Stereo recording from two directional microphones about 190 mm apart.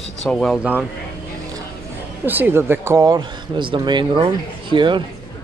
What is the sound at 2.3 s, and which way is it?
Speech, 10° right (ahead or behind).